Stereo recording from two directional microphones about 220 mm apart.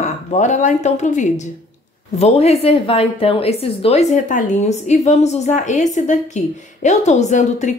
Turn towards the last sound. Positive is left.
turn(degrees=30)  # may be behind; listen again after turning